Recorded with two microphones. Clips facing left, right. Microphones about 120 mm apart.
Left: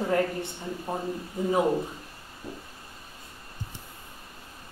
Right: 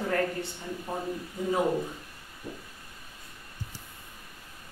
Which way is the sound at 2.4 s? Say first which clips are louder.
Left 1 dB; 30° left (ahead or behind).